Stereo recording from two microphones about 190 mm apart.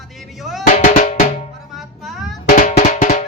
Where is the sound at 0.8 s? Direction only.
45° left (ahead or behind).